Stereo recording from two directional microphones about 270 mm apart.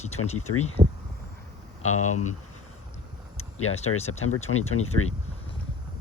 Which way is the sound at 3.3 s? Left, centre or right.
Left.